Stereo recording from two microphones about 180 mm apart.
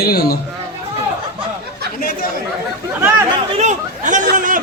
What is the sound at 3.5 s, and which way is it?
Speech, 40° right (ahead or behind).